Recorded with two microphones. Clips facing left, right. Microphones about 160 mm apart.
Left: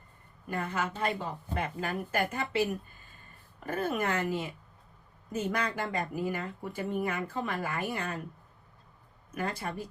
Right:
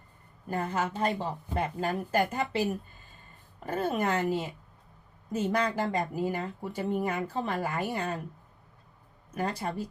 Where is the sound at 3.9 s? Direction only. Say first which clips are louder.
Right 3 dB; 30° right (ahead or behind).